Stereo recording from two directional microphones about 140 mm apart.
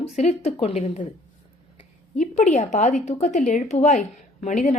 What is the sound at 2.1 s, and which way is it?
A woman's voice, 55° left (ahead or behind).